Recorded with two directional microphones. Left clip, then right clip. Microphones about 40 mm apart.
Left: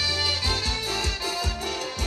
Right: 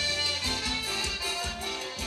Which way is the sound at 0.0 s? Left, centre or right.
Left.